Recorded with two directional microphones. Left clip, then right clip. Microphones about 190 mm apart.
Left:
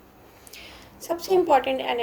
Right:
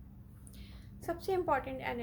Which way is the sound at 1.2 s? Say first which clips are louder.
Left 13 dB; 20° left (ahead or behind).